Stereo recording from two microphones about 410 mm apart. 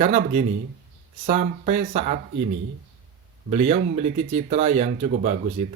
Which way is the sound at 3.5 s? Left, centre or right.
Centre.